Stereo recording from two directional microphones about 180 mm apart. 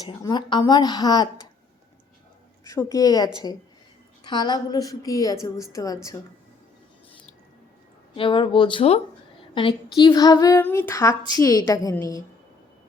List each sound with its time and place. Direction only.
0.0 s a woman's voice: 20° left (ahead or behind)
2.6 s a woman's voice: 20° left (ahead or behind)
4.3 s a woman's voice: 25° left (ahead or behind)
8.1 s a woman's voice: 30° left (ahead or behind)